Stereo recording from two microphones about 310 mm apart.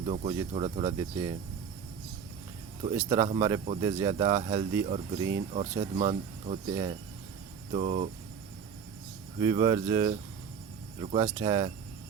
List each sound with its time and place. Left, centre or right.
0.0 s speech: centre
2.8 s speech: centre
7.7 s cricket: right
9.4 s speech: centre